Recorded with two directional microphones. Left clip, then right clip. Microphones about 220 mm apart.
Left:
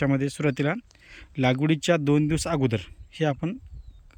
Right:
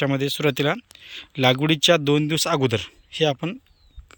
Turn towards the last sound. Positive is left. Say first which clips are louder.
# right 5 dB
turn(degrees=10)  # may be behind; listen again after turning